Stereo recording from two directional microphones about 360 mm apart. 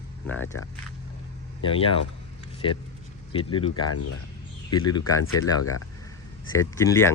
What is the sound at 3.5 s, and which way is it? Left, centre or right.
Speech, centre.